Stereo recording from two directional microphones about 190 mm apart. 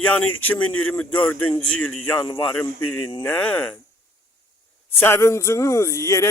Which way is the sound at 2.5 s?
10° left (ahead or behind).